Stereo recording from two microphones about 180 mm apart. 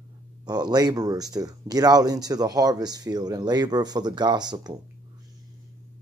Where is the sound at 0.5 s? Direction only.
20° right (ahead or behind).